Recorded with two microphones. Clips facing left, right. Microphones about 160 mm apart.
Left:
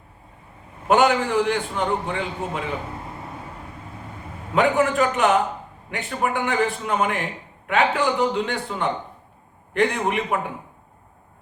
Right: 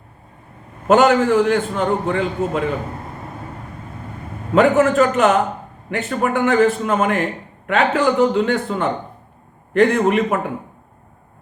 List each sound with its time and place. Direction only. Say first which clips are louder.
0.9 s a man's voice: right 5 dB; 45° right (ahead or behind)
4.5 s a man's voice: right 6 dB; 45° right (ahead or behind)